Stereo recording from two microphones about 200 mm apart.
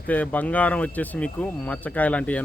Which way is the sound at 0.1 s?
10° left (ahead or behind).